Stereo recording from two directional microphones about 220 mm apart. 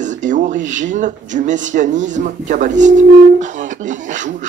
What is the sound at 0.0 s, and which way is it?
Speech, 35° right (ahead or behind).